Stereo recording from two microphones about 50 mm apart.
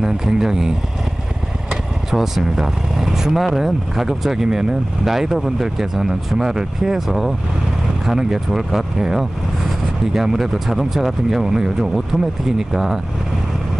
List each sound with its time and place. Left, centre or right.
0.0 s speech: centre
2.0 s speech: centre